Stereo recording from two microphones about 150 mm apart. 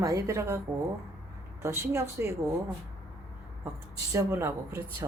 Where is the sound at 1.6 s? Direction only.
20° right (ahead or behind).